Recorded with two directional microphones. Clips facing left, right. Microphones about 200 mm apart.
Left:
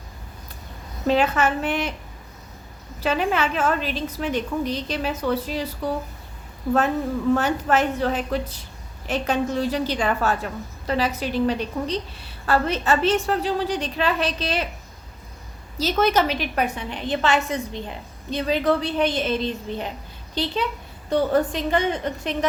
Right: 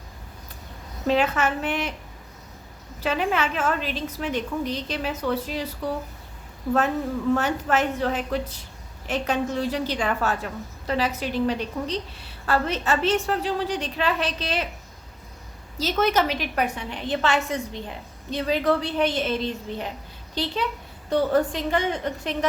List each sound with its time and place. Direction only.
1.0 s a woman's voice: 35° left (ahead or behind)
3.0 s a woman's voice: 35° left (ahead or behind)
7.3 s a woman's voice: 35° left (ahead or behind)
15.8 s a woman's voice: 35° left (ahead or behind); by 22.4 s 20° left (ahead or behind)